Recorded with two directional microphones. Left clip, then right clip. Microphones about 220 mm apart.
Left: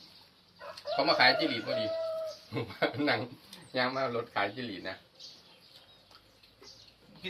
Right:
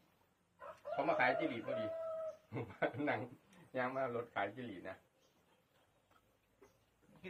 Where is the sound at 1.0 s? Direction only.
10° left (ahead or behind).